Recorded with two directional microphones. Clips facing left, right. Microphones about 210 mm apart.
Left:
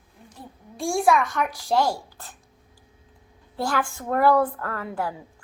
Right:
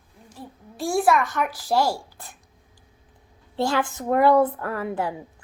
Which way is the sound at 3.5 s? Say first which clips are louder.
Right 3 dB; 25° right (ahead or behind).